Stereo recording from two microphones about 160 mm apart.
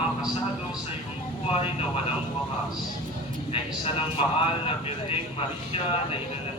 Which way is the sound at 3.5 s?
35° left (ahead or behind).